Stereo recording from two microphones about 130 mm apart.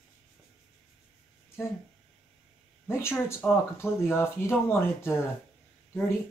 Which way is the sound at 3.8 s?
20° left (ahead or behind).